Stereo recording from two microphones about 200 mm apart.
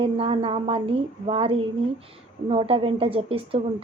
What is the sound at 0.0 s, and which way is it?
A woman's voice, 30° right (ahead or behind).